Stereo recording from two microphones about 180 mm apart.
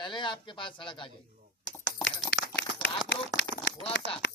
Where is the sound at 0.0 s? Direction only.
25° left (ahead or behind).